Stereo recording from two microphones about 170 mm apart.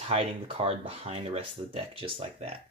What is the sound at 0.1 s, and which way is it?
Speech, 35° right (ahead or behind).